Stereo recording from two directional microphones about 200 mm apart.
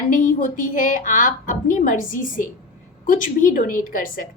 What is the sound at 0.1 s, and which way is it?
A woman's voice, 40° left (ahead or behind).